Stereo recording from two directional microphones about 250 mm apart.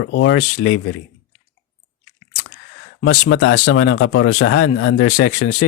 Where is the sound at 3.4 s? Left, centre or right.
Left.